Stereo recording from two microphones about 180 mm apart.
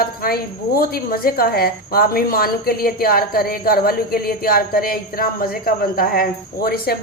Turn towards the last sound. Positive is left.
turn(degrees=55)  # may be behind; listen again after turning